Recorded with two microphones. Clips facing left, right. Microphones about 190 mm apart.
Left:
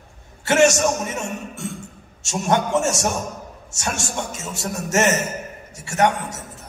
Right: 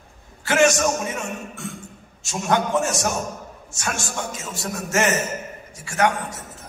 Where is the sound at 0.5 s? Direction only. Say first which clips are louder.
Left 2 dB; 25° left (ahead or behind).